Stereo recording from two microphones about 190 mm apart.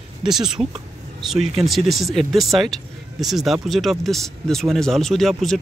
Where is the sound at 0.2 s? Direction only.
5° right (ahead or behind).